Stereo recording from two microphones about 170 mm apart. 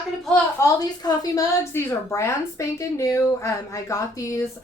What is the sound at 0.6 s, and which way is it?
A woman's voice, 20° left (ahead or behind).